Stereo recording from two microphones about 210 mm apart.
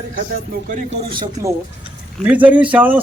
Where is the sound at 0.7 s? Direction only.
40° right (ahead or behind).